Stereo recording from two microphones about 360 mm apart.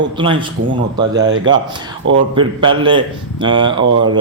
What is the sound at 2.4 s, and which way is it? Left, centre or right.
A man's voice, centre.